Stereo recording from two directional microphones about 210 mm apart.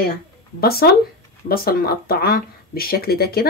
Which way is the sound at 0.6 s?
45° left (ahead or behind).